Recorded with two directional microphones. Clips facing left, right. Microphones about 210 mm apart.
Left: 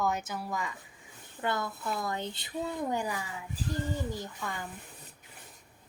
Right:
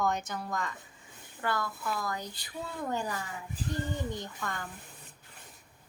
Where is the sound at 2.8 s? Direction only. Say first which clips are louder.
Left 1 dB; 15° left (ahead or behind).